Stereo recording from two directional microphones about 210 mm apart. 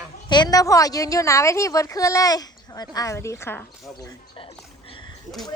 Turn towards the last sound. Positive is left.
turn(degrees=25)  # may be behind; listen again after turning